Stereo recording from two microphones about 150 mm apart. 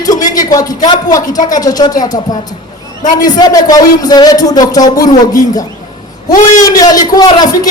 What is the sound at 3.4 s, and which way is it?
A man's voice, 25° left (ahead or behind).